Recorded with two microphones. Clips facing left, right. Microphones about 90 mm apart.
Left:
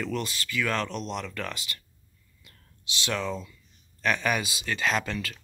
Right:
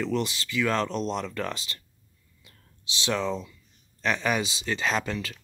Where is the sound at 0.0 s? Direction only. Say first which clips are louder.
Right 3 dB; 20° right (ahead or behind).